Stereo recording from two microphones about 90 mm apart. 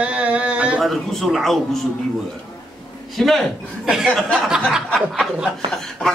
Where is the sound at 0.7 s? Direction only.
Centre (ahead or behind).